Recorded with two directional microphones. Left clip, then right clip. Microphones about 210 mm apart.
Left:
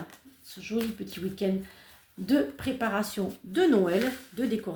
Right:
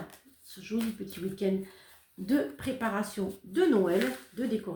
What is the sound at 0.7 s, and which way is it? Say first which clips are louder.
Speech: left 3 dB; 40° left (ahead or behind).